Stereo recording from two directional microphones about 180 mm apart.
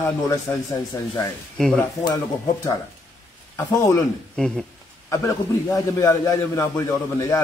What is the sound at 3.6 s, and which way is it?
Speech, 20° left (ahead or behind).